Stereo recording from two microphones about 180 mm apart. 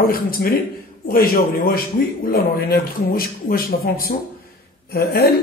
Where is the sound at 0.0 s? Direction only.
55° left (ahead or behind).